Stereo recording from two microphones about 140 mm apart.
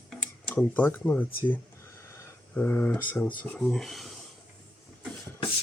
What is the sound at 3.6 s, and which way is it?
Speech, centre (ahead or behind).